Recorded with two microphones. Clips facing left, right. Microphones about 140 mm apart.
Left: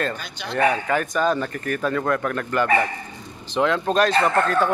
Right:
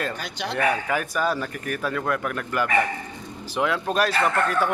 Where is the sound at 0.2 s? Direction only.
75° right (ahead or behind).